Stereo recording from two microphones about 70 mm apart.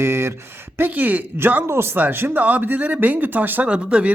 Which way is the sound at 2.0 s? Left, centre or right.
Right.